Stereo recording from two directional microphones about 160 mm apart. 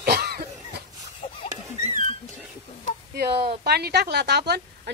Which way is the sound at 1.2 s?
30° left (ahead or behind).